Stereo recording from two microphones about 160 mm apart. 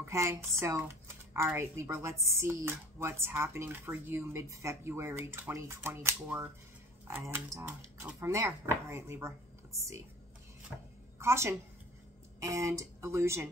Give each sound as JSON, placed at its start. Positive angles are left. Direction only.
{"t": 0.0, "sound": "speech", "side_deg": -15}
{"t": 11.1, "sound": "a woman's voice", "side_deg": -15}